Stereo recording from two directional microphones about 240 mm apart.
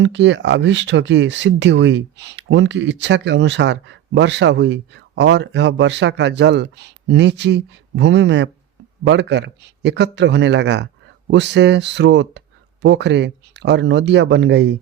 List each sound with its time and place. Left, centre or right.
0.0 s speech: right